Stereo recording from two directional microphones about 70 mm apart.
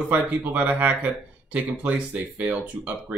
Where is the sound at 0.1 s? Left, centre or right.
Right.